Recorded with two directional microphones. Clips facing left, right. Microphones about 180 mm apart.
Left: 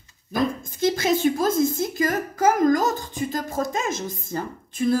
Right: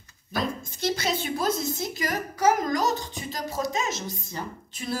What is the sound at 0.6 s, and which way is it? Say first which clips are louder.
Speech: left 6 dB; 50° left (ahead or behind).